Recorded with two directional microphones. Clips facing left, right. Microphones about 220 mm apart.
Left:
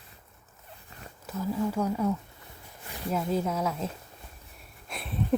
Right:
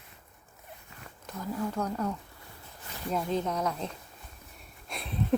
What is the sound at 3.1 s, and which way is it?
Speech, 5° left (ahead or behind).